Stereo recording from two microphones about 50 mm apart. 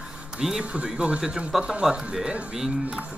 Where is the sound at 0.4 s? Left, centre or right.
Centre.